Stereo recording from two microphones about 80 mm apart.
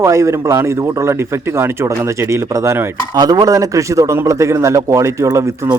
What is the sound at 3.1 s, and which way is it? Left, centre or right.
A man's voice, right.